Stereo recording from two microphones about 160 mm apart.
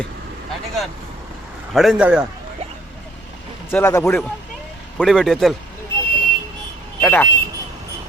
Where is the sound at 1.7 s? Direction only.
Centre (ahead or behind).